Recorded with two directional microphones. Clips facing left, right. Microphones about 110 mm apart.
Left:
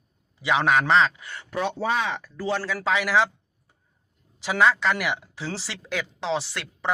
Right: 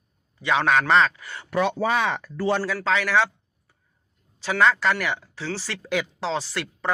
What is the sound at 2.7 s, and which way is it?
Speech, 10° left (ahead or behind).